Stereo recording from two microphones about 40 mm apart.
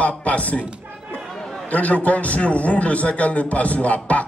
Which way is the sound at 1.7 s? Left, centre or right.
Left.